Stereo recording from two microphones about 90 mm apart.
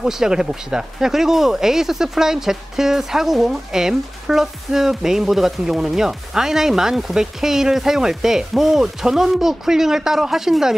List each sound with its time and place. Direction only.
0.0 s speech: 5° right (ahead or behind)